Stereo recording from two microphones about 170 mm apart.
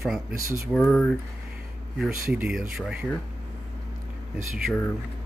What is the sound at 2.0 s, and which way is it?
Speech, 5° right (ahead or behind).